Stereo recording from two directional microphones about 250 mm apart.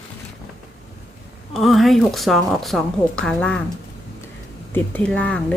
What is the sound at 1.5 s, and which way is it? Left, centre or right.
A woman's voice, centre.